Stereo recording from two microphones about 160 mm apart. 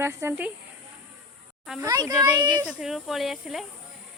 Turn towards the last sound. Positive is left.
turn(degrees=0)  # may be behind; listen again after turning